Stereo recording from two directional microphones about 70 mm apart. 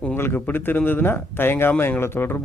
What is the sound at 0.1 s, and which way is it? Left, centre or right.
Speech, left.